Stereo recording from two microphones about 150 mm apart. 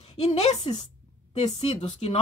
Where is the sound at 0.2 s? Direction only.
45° left (ahead or behind).